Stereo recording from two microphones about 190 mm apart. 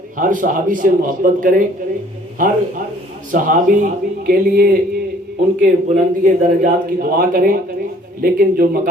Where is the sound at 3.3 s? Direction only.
45° right (ahead or behind).